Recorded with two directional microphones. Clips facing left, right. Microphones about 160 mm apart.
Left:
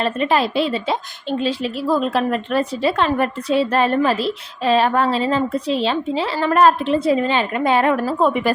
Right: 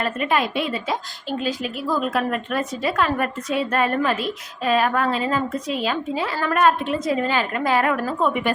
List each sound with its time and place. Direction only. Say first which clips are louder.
0.0 s a woman's voice: left 4 dB; 30° left (ahead or behind)